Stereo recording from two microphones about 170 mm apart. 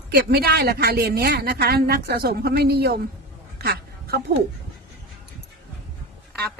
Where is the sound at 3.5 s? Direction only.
70° right (ahead or behind).